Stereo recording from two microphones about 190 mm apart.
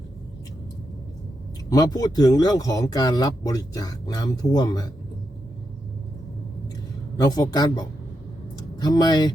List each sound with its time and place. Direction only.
1.7 s speech: 20° left (ahead or behind)
7.2 s speech: 20° left (ahead or behind)